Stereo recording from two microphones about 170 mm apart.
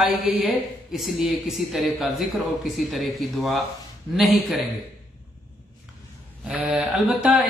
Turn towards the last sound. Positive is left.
turn(degrees=-5)  # may be behind; listen again after turning